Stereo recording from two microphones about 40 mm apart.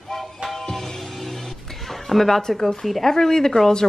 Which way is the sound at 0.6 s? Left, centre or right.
Centre.